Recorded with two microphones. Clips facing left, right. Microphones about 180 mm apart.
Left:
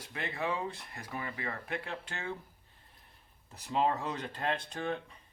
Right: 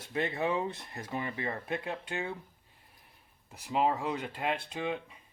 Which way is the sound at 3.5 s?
10° right (ahead or behind).